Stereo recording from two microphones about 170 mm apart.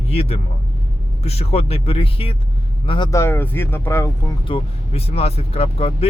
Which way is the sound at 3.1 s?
15° left (ahead or behind).